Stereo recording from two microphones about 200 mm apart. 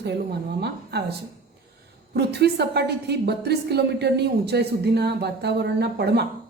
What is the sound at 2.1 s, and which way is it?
A man's voice, 55° right (ahead or behind).